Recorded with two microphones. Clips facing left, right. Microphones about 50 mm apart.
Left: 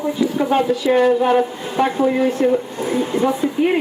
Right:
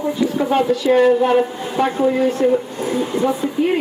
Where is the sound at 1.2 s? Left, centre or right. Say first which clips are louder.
Even; centre.